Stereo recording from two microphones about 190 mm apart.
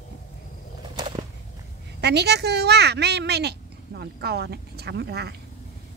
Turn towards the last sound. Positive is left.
turn(degrees=-60)  # may be behind; listen again after turning